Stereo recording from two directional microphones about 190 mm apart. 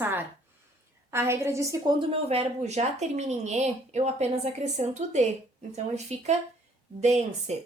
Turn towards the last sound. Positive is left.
turn(degrees=-35)  # may be behind; listen again after turning